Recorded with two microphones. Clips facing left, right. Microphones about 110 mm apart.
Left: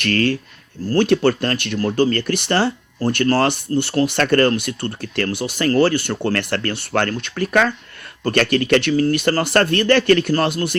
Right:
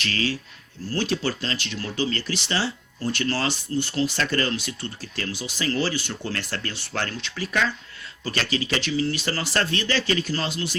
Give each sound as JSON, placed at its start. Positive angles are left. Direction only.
{"t": 0.0, "sound": "speech", "side_deg": 55}